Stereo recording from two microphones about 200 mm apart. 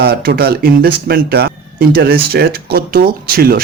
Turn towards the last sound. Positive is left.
turn(degrees=-50)  # may be behind; listen again after turning